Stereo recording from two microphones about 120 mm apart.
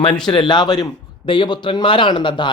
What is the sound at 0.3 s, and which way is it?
A man's voice, 40° left (ahead or behind).